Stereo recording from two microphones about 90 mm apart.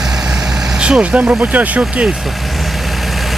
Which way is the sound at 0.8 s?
10° right (ahead or behind).